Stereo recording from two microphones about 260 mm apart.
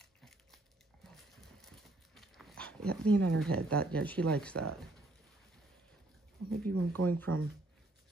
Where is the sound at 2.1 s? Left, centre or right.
Centre.